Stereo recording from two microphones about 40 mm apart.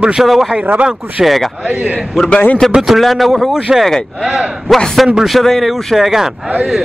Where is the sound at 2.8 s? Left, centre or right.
Centre.